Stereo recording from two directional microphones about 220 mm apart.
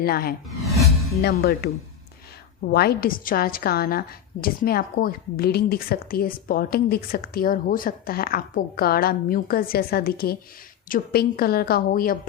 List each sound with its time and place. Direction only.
0.0 s a woman's voice: 45° left (ahead or behind)